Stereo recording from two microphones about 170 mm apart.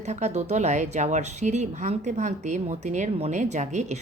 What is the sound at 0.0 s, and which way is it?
A woman's voice, 40° right (ahead or behind).